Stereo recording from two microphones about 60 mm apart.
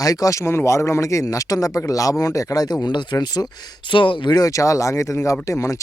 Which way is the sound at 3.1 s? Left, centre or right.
Left.